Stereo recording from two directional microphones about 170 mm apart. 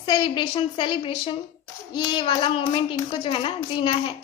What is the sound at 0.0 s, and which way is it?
A woman's voice, 25° left (ahead or behind).